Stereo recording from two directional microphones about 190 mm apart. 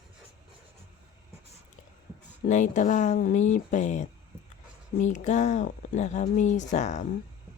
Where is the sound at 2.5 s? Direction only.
40° left (ahead or behind).